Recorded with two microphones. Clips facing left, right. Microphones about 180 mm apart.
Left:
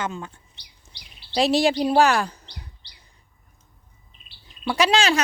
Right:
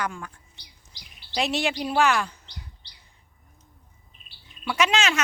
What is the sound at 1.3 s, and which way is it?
Speech, 35° left (ahead or behind).